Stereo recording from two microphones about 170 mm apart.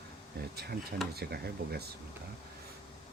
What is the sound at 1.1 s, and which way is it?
Speech, 70° right (ahead or behind).